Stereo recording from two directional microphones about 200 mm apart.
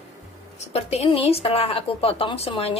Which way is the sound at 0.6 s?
30° left (ahead or behind).